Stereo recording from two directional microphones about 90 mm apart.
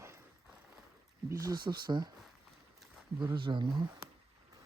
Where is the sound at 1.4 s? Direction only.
55° right (ahead or behind).